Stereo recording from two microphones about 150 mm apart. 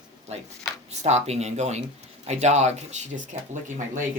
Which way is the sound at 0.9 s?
50° right (ahead or behind).